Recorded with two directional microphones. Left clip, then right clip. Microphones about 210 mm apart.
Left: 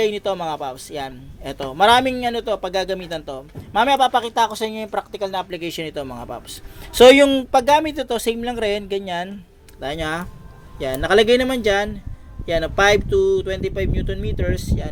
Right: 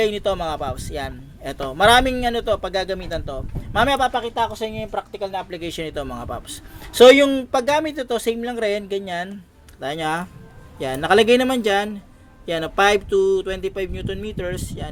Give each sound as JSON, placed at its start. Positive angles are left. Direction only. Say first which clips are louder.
{"t": 0.0, "sound": "a man's voice", "louder": "even", "side_deg": 0}
{"t": 4.1, "sound": "a man's voice", "louder": "left 4 dB", "side_deg": 15}